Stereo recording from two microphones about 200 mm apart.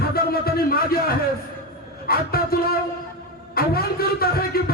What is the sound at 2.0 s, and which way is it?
Speech, 50° left (ahead or behind).